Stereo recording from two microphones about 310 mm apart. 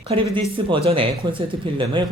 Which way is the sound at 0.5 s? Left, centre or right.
Centre.